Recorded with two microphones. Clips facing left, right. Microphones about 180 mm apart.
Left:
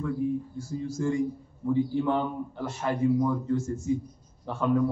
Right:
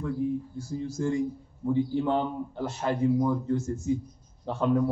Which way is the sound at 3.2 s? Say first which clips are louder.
Even; 25° right (ahead or behind).